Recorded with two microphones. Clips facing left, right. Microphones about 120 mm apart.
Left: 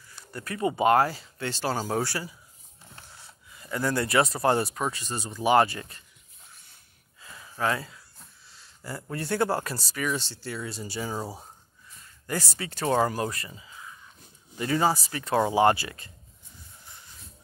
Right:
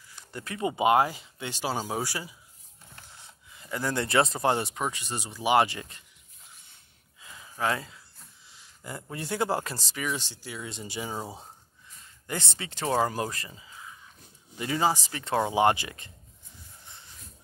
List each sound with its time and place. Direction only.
0.3 s speech: 20° right (ahead or behind)
3.2 s a sound: 20° right (ahead or behind)
4.5 s speech: 20° right (ahead or behind)
7.2 s gasp: 20° right (ahead or behind)
8.5 s a sound: 15° right (ahead or behind)
9.1 s speech: 15° right (ahead or behind)
12.3 s speech: 25° right (ahead or behind)